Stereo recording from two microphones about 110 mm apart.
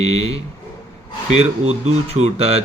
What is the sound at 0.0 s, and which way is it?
Speech, 70° right (ahead or behind).